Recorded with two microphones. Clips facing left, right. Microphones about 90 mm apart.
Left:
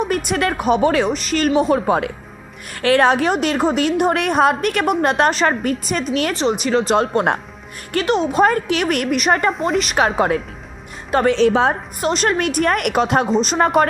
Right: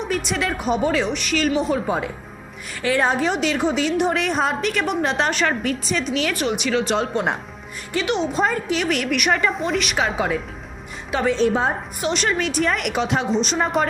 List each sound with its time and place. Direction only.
0.0 s speech: 50° left (ahead or behind)
1.1 s a woman's voice: 40° left (ahead or behind); by 3.3 s 70° left (ahead or behind)
3.3 s a woman's voice: 45° left (ahead or behind)
5.3 s a woman's voice: 40° left (ahead or behind)
6.3 s a woman's voice: 30° left (ahead or behind)
6.9 s a woman's voice: 50° left (ahead or behind)
8.0 s a woman's voice: 40° left (ahead or behind)
8.3 s a woman's voice: 60° left (ahead or behind)
9.1 s a woman's voice: 35° left (ahead or behind)
10.0 s a woman's voice: 55° left (ahead or behind)
11.3 s a woman's voice: 90° left
11.9 s a woman's voice: 45° left (ahead or behind)
13.6 s a woman's voice: 60° left (ahead or behind)